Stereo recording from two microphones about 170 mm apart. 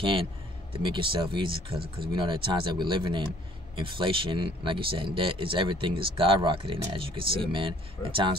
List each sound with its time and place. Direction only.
0.0 s speech: 30° right (ahead or behind)